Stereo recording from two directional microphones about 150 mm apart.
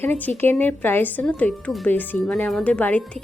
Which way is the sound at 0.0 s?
10° left (ahead or behind).